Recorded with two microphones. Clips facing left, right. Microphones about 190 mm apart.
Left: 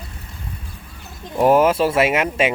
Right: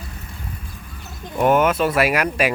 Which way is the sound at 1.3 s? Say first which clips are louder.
Left 2 dB; 30° left (ahead or behind).